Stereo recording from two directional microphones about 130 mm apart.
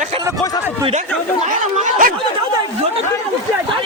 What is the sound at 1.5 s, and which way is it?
Speech, 90° right.